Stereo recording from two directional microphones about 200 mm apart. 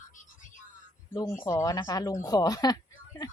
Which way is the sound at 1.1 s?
15° left (ahead or behind).